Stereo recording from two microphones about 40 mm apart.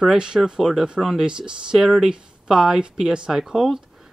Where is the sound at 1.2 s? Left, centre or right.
Right.